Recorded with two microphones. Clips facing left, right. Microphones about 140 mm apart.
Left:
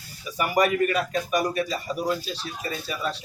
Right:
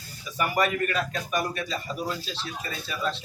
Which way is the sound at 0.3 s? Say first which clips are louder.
Left 3 dB; 10° left (ahead or behind).